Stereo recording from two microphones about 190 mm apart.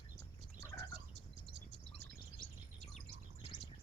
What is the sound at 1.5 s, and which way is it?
Bird, 60° right (ahead or behind).